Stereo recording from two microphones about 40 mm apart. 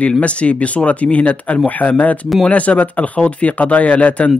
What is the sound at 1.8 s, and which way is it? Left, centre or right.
A man's voice, left.